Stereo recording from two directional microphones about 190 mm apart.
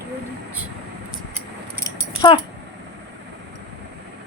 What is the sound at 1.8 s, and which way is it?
Keys jangling, 25° left (ahead or behind).